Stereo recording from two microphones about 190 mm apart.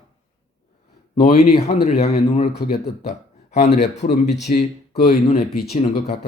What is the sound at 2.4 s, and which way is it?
Speech, 50° left (ahead or behind).